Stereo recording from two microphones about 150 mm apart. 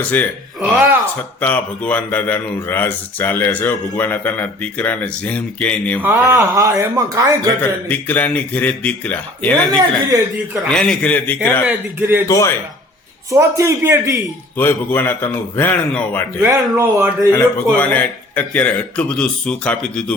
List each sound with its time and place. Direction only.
0.0 s speech: 10° left (ahead or behind)
0.6 s a man's voice: 10° right (ahead or behind)
1.4 s speech: 10° left (ahead or behind)
6.0 s speech: 15° right (ahead or behind)
7.6 s speech: 10° left (ahead or behind)
9.6 s speech: 25° right (ahead or behind)
10.7 s speech: 5° left (ahead or behind)
11.6 s a man's voice: 10° right (ahead or behind)
12.3 s a man's voice: 20° left (ahead or behind)
13.3 s speech: 20° right (ahead or behind)
14.5 s speech: 15° left (ahead or behind)
16.7 s a man's voice: 15° right (ahead or behind)
17.3 s speech: 10° left (ahead or behind)